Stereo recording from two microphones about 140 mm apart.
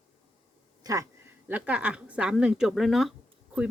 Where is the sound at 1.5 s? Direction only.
10° right (ahead or behind).